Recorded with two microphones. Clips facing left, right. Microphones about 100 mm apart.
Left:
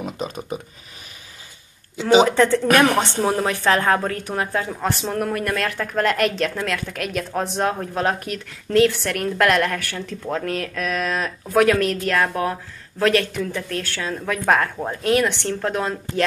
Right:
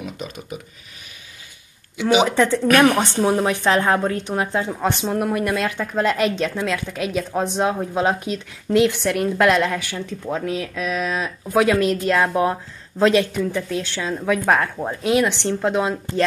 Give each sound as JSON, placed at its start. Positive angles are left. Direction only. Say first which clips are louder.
{"t": 0.0, "sound": "a sound", "louder": "left 3 dB", "side_deg": 35}
{"t": 2.0, "sound": "speech", "louder": "left 2 dB", "side_deg": 35}
{"t": 2.2, "sound": "a woman's voice", "louder": "left 1 dB", "side_deg": -15}